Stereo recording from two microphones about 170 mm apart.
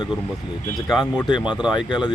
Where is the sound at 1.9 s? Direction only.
25° left (ahead or behind).